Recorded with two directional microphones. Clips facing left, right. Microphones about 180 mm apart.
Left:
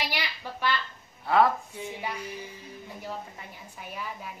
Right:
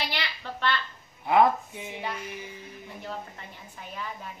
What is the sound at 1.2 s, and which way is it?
Speech, 15° right (ahead or behind).